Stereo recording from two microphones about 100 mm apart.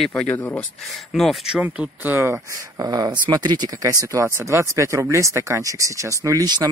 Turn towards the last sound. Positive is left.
turn(degrees=-40)  # may be behind; listen again after turning